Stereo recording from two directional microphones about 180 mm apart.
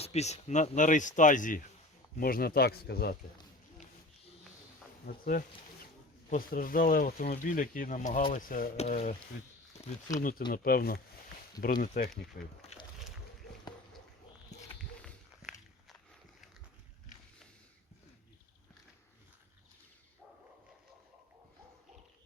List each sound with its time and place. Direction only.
0.0 s speech: 35° left (ahead or behind); by 3.2 s 60° left (ahead or behind)
5.0 s speech: 50° left (ahead or behind)
8.7 s speech: 35° left (ahead or behind)
10.2 s speech: 50° left (ahead or behind)
12.7 s a sound: 35° left (ahead or behind)
15.0 s walk: centre (ahead or behind)